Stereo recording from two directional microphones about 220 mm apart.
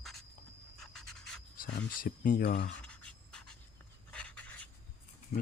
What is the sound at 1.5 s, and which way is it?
Speech, 45° left (ahead or behind).